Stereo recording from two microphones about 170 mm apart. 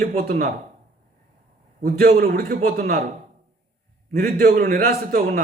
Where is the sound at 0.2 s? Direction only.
55° right (ahead or behind).